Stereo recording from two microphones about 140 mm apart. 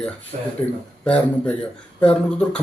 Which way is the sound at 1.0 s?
10° left (ahead or behind).